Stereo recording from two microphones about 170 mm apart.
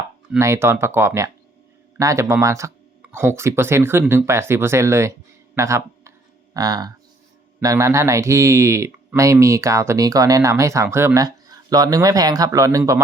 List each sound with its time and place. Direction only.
0.3 s speech: 15° right (ahead or behind)
5.5 s a sound: 15° right (ahead or behind)
7.6 s speech: 20° right (ahead or behind)